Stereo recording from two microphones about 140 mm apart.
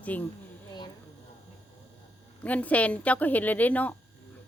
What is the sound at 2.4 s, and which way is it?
Speech, 10° left (ahead or behind).